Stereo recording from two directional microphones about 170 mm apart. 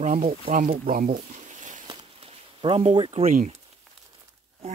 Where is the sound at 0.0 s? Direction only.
45° right (ahead or behind).